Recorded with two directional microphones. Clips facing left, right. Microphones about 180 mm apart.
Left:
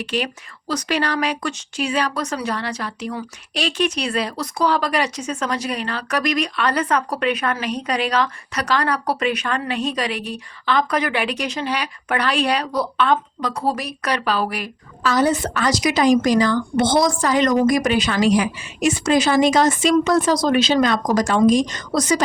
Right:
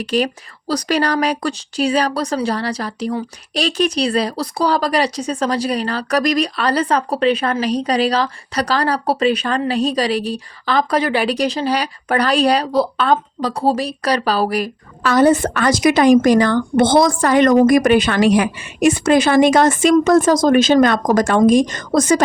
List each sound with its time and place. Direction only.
0.0 s speech: 40° right (ahead or behind)
15.0 s a woman's voice: 55° right (ahead or behind)